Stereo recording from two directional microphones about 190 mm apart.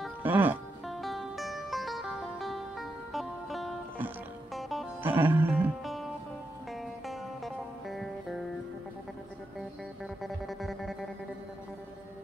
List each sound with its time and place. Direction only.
0.2 s music: 10° right (ahead or behind)
7.1 s music: centre (ahead or behind)
10.2 s music: centre (ahead or behind)